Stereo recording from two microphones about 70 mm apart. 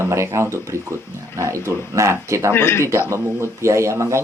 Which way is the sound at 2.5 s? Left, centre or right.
Left.